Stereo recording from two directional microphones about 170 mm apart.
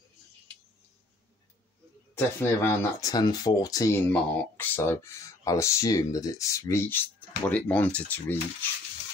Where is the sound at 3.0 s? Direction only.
25° left (ahead or behind).